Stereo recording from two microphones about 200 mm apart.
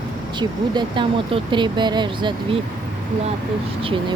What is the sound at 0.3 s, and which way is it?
Speech, 20° right (ahead or behind).